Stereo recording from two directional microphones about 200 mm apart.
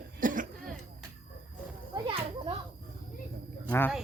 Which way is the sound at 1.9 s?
25° right (ahead or behind).